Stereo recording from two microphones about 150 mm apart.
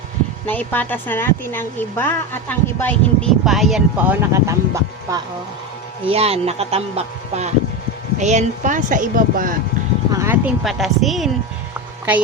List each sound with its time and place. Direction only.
0.4 s a woman's voice: 10° left (ahead or behind)
3.4 s speech: centre (ahead or behind); by 5.2 s 20° right (ahead or behind)
6.1 s speech: 40° right (ahead or behind); by 9.6 s 65° right (ahead or behind)
10.1 s a sound: 20° right (ahead or behind)
10.4 s a woman's voice: centre (ahead or behind)